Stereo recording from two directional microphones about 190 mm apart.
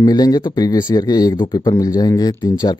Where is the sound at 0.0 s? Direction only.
20° left (ahead or behind).